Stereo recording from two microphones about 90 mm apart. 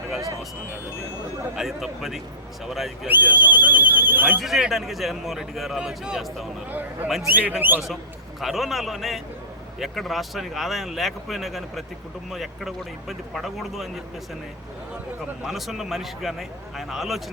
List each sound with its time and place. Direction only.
1.5 s speech: 5° right (ahead or behind)
3.1 s speech: 20° right (ahead or behind)
4.4 s speech: 5° right (ahead or behind)
6.7 s speech: 20° right (ahead or behind)
8.4 s speech: centre (ahead or behind)
15.4 s speech: centre (ahead or behind)